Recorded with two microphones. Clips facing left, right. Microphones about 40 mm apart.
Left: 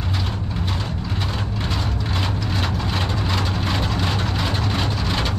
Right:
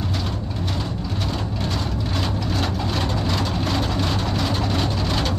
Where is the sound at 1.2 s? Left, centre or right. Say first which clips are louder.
Right 1 dB; left.